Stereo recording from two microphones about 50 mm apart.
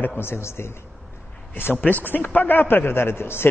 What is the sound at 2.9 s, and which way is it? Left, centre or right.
Speech, left.